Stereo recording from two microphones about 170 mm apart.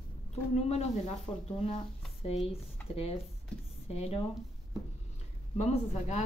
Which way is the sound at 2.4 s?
35° left (ahead or behind).